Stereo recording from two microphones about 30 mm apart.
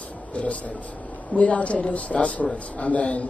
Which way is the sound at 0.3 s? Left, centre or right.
Left.